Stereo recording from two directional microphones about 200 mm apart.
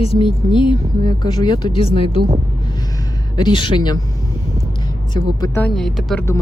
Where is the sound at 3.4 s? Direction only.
25° left (ahead or behind).